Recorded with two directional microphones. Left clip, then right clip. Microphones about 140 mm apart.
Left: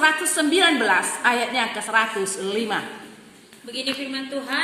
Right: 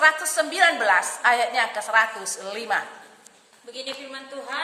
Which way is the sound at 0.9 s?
35° right (ahead or behind).